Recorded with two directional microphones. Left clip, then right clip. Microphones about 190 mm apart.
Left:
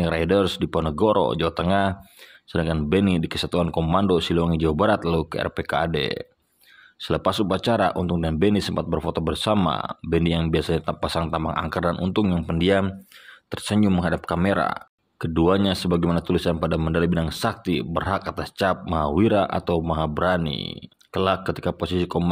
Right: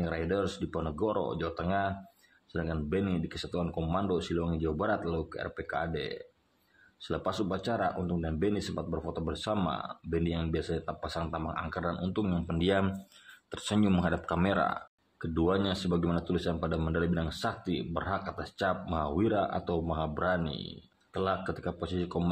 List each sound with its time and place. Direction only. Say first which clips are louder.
0.0 s speech: left 11 dB; 40° left (ahead or behind)